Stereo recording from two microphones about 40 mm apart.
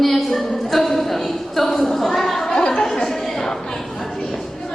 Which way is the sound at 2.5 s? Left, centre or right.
Left.